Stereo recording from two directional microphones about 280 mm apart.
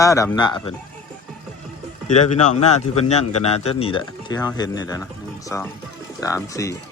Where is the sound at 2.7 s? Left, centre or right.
Left.